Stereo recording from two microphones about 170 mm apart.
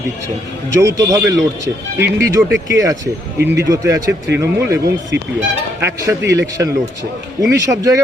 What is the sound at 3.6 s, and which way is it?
A man's voice, 15° right (ahead or behind).